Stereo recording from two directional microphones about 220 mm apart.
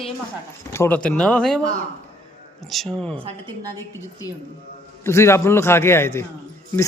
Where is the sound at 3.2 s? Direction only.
15° right (ahead or behind).